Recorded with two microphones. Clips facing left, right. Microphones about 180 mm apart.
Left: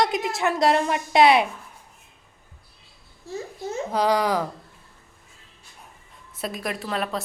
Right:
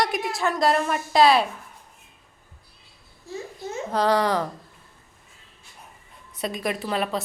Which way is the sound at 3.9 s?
10° left (ahead or behind).